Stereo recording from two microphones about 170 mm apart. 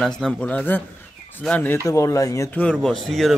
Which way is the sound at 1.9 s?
20° left (ahead or behind).